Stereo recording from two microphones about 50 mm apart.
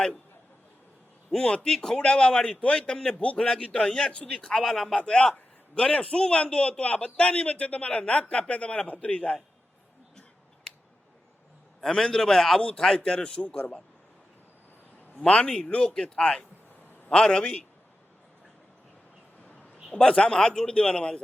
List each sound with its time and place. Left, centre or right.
1.3 s a man's voice: centre
11.8 s a man's voice: centre
15.3 s a man's voice: left
20.0 s a man's voice: centre